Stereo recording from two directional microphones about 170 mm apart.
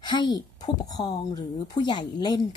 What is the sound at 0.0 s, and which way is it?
Speech, 25° left (ahead or behind).